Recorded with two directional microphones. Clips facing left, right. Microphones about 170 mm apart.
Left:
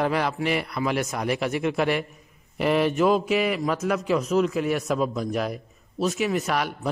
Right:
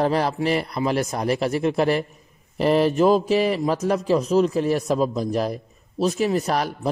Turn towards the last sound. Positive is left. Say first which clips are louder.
# right 3 dB
turn(degrees=-35)  # may be behind; listen again after turning